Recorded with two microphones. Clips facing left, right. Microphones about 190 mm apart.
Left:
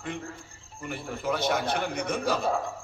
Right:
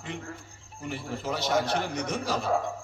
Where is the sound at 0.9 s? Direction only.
55° left (ahead or behind).